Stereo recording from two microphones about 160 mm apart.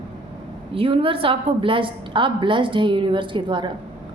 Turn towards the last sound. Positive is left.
turn(degrees=-30)  # may be behind; listen again after turning